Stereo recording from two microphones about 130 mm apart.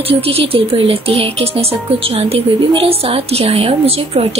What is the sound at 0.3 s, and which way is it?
Speech, 50° right (ahead or behind).